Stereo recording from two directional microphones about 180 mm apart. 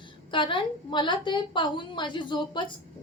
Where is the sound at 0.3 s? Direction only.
25° left (ahead or behind).